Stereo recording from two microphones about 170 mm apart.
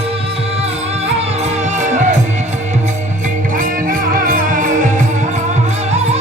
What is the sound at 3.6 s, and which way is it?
Music, 55° right (ahead or behind).